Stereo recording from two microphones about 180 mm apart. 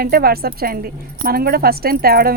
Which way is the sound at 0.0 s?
55° right (ahead or behind).